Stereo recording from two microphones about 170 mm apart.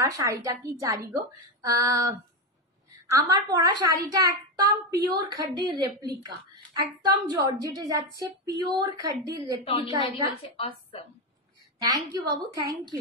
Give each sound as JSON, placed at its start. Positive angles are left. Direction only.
{"t": 0.0, "sound": "a woman's voice", "side_deg": -20}
{"t": 10.4, "sound": "a woman's voice", "side_deg": 30}
{"t": 11.8, "sound": "a woman's voice", "side_deg": -25}